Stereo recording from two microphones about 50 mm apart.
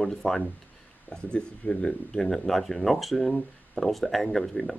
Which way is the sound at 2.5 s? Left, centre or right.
Centre.